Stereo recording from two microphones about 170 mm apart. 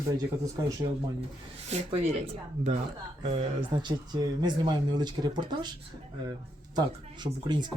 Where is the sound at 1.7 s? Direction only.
35° right (ahead or behind).